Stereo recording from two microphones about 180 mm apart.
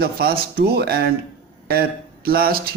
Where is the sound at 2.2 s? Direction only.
55° right (ahead or behind).